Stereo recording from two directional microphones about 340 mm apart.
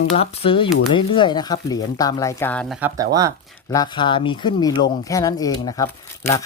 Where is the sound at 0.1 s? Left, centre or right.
Centre.